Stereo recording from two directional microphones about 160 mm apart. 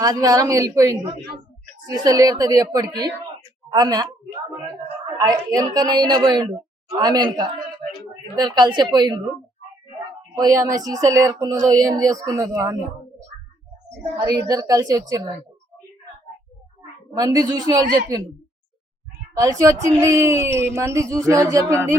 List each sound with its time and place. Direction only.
0.0 s a woman's voice: 20° right (ahead or behind)
10.3 s speech: 20° right (ahead or behind)
13.8 s speech: 20° right (ahead or behind)
17.2 s speech: 20° right (ahead or behind)
19.3 s speech: 20° right (ahead or behind)